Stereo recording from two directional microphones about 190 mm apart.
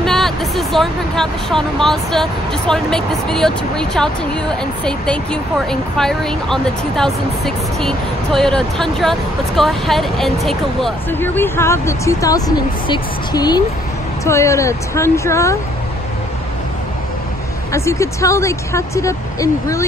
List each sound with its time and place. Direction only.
0.0 s speech: centre (ahead or behind)
17.7 s speech: 15° left (ahead or behind)